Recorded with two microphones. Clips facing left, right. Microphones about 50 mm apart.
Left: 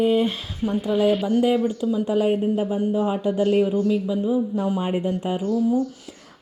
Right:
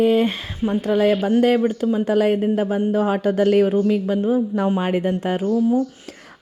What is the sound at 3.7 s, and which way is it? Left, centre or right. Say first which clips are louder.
Speech: right 3 dB; right.